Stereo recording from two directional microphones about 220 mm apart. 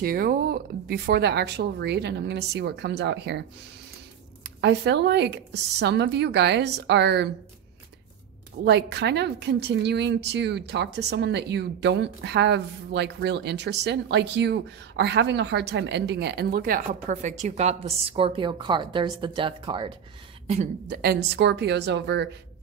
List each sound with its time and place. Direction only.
0.0 s a woman's voice: 40° right (ahead or behind)
8.6 s a woman's voice: 50° right (ahead or behind); by 19.9 s 20° right (ahead or behind)
20.9 s a woman's voice: 45° right (ahead or behind)